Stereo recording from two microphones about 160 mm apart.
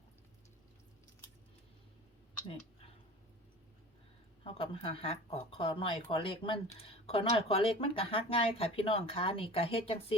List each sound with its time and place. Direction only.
4.4 s speech: 35° left (ahead or behind)